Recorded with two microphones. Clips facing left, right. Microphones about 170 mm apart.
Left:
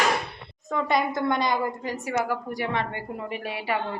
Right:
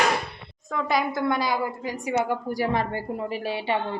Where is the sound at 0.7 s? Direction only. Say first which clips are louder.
Even; centre (ahead or behind); by 2.5 s 25° right (ahead or behind).